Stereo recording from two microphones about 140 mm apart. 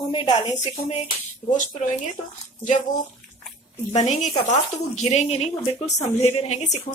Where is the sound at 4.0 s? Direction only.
55° left (ahead or behind).